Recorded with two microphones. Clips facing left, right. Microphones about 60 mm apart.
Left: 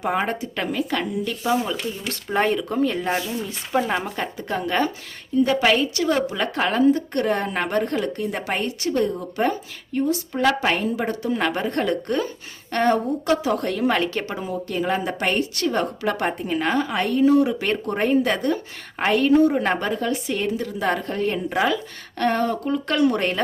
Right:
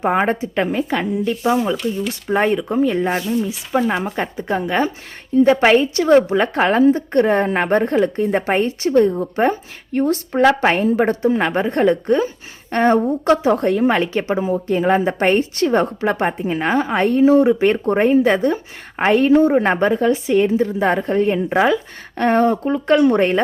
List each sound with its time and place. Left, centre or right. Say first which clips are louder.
0.0 s a woman's voice: right 6 dB; right; by 4.0 s centre
4.0 s a woman's voice: right 5 dB; right
5.4 s a woman's voice: right 6 dB; right
9.9 s speech: right 5 dB; right
10.4 s a woman's voice: right 6 dB; right
10.8 s a woman's voice: right 8 dB; right